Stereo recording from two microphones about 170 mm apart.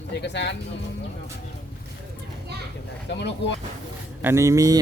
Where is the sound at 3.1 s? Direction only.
90° left.